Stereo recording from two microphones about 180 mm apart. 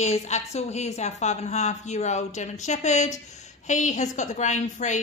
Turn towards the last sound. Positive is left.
turn(degrees=40)  # may be behind; listen again after turning